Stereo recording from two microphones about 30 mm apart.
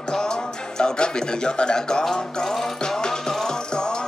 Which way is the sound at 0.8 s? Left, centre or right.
Left.